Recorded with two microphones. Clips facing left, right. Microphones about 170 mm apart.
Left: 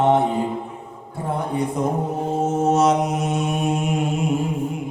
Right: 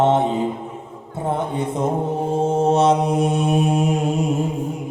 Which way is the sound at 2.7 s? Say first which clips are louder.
Right 2 dB; 30° right (ahead or behind).